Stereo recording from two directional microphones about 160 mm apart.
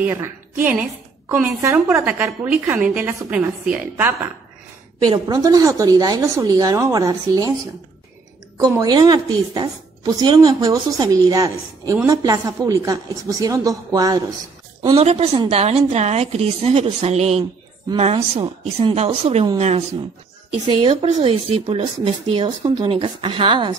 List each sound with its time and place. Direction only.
0.0 s a woman's voice: 15° right (ahead or behind)
5.0 s a woman's voice: 25° right (ahead or behind)
8.5 s a woman's voice: 25° right (ahead or behind)
15.0 s speech: 40° right (ahead or behind)
20.6 s speech: 35° right (ahead or behind)